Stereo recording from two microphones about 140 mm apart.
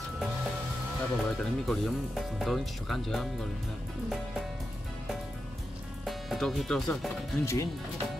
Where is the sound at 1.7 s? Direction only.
Centre (ahead or behind).